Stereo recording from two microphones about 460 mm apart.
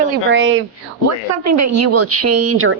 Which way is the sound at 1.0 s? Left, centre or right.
Right.